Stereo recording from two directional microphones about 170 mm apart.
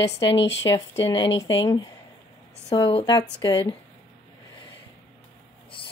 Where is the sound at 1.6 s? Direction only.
25° left (ahead or behind).